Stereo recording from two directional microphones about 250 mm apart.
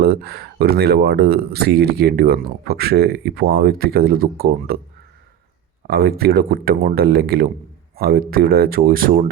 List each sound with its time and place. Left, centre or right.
0.0 s speech: right
5.9 s speech: right